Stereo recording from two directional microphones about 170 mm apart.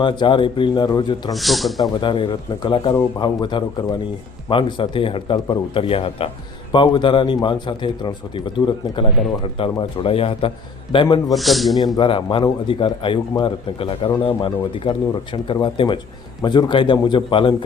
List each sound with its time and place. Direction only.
0.0 s a man's voice: 30° left (ahead or behind)
1.3 s a man's voice: centre (ahead or behind)
2.0 s a man's voice: 30° left (ahead or behind)
11.3 s a man's voice: centre (ahead or behind)
11.9 s a man's voice: 30° left (ahead or behind)